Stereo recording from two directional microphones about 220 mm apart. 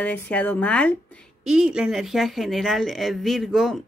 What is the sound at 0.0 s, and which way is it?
A woman's voice, 5° left (ahead or behind).